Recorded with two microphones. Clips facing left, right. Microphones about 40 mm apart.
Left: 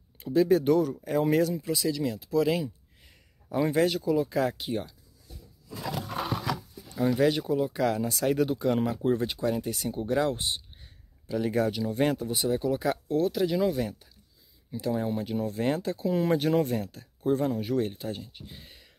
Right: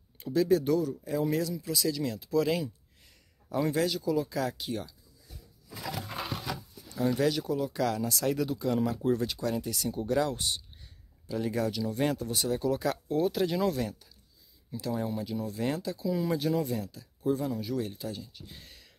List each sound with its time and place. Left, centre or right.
0.2 s a sound: centre
0.5 s speech: left
0.7 s speech: left
1.6 s speech: centre
2.0 s speech: centre
3.6 s speech: left
7.0 s speech: centre
7.2 s speech: left
13.1 s speech: centre
13.8 s speech: left
18.4 s speech: centre